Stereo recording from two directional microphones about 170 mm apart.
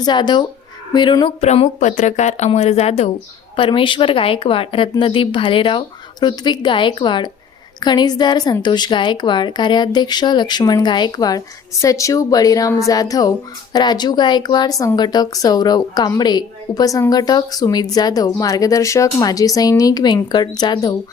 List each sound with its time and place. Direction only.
0.0 s a woman's voice: 25° left (ahead or behind)
1.5 s a woman's voice: 45° left (ahead or behind); by 20.9 s 25° left (ahead or behind)